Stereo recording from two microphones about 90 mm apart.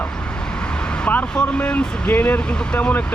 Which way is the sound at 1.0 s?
15° left (ahead or behind).